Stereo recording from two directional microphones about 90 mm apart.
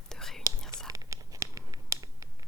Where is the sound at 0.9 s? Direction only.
40° right (ahead or behind).